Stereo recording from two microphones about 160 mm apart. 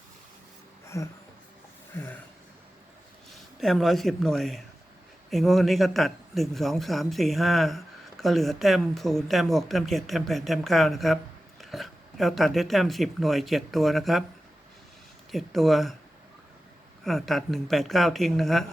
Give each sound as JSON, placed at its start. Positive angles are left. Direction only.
{"t": 1.9, "sound": "speech", "side_deg": 15}
{"t": 3.3, "sound": "a man's voice", "side_deg": 0}
{"t": 15.3, "sound": "a man's voice", "side_deg": 0}
{"t": 17.0, "sound": "a man's voice", "side_deg": 0}